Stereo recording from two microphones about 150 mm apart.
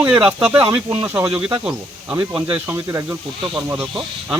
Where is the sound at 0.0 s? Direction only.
10° right (ahead or behind).